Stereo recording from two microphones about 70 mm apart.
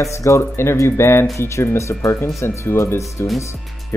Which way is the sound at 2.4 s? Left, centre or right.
Left.